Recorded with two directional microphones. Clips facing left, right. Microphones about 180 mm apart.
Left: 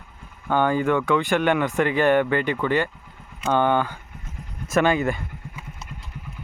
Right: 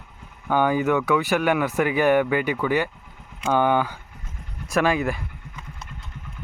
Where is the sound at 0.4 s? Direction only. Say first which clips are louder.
Even; 10° right (ahead or behind).